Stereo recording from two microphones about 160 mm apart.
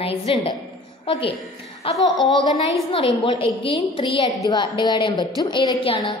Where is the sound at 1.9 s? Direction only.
35° left (ahead or behind).